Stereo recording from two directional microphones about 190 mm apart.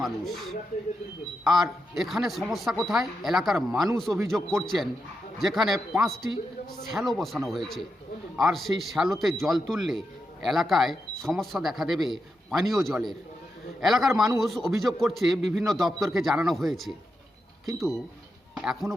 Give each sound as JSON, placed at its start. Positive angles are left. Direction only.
{"t": 0.0, "sound": "speech", "side_deg": 0}
{"t": 2.0, "sound": "speech", "side_deg": 0}